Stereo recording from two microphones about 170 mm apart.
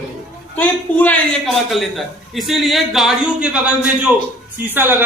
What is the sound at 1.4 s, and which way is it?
A man's voice, centre (ahead or behind).